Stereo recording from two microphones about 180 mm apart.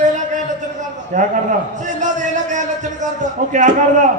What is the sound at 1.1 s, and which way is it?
A man's voice, 45° right (ahead or behind).